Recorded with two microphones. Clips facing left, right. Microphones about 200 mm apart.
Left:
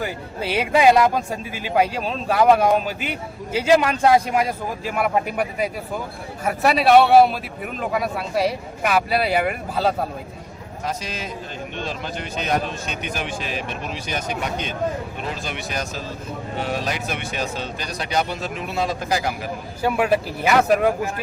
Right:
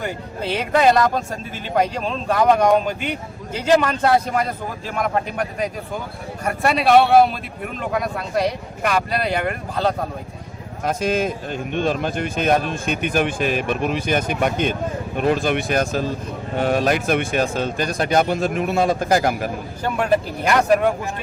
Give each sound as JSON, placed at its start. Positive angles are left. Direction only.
{"t": 0.0, "sound": "speech", "side_deg": 10}
{"t": 10.8, "sound": "speech", "side_deg": -50}
{"t": 19.8, "sound": "speech", "side_deg": 5}